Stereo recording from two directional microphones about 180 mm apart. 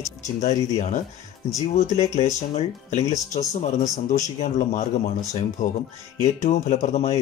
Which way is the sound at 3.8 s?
20° left (ahead or behind).